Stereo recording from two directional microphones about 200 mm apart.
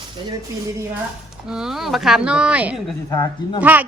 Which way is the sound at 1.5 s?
Centre (ahead or behind).